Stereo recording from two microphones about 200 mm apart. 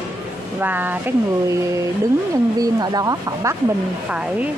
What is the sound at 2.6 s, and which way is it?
Speech, 20° right (ahead or behind).